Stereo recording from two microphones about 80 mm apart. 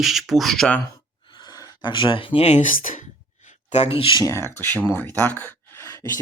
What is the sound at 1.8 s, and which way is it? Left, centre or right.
Speech, left.